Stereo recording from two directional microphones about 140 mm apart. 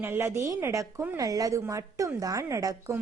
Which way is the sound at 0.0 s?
15° right (ahead or behind).